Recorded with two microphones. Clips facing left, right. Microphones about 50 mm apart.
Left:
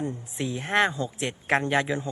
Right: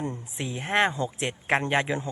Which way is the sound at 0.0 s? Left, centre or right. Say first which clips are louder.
Left 2 dB; centre.